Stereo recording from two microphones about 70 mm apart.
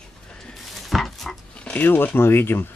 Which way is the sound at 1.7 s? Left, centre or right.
Left.